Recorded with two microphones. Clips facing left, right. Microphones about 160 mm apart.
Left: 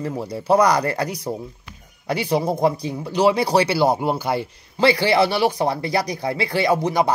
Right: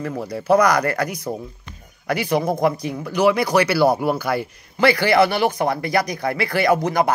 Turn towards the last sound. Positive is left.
turn(degrees=25)  # may be behind; listen again after turning